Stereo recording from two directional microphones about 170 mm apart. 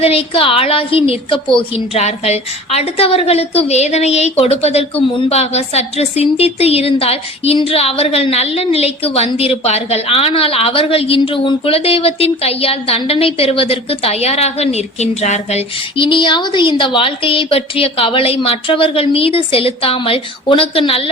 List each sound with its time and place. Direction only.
0.0 s a woman's voice: 35° left (ahead or behind)